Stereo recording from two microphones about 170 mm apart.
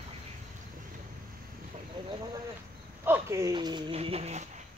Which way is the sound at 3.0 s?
15° right (ahead or behind).